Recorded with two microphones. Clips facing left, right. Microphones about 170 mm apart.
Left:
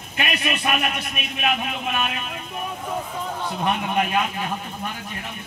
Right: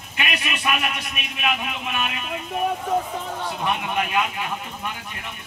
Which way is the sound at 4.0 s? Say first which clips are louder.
Left 1 dB; 40° left (ahead or behind).